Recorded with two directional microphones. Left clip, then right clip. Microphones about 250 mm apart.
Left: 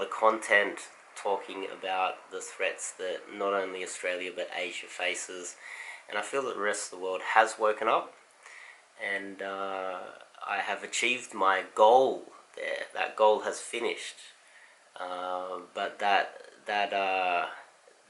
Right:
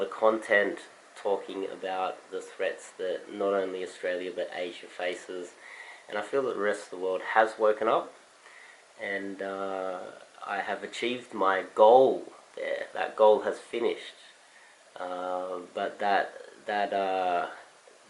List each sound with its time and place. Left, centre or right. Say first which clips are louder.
0.0 s speech: even; centre
11.9 s speech: right 3 dB; right
12.5 s speech: right 1 dB; centre
15.2 s speech: right 2 dB; right
15.7 s speech: even; centre